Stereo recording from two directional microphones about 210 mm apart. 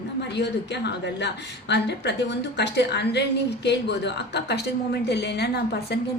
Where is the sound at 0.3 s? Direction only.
55° left (ahead or behind).